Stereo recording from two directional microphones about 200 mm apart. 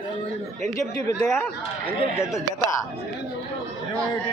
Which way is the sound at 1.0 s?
15° left (ahead or behind).